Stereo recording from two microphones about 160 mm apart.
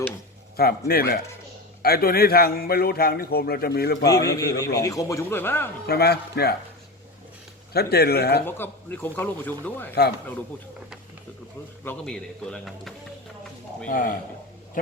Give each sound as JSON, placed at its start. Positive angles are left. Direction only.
{"t": 0.5, "sound": "a man's voice", "side_deg": 70}
{"t": 4.0, "sound": "a man's voice", "side_deg": 20}
{"t": 5.8, "sound": "speech", "side_deg": 80}
{"t": 7.7, "sound": "speech", "side_deg": 80}
{"t": 8.4, "sound": "speech", "side_deg": 15}
{"t": 11.9, "sound": "speech", "side_deg": 5}
{"t": 13.8, "sound": "speech", "side_deg": 60}